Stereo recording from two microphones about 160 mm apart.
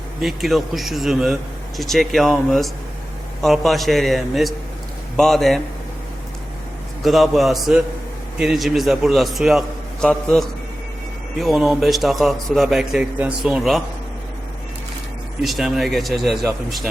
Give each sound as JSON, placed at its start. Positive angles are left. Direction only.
{"t": 0.2, "sound": "a man's voice", "side_deg": 0}
{"t": 7.0, "sound": "a man's voice", "side_deg": 0}
{"t": 15.4, "sound": "a man's voice", "side_deg": 0}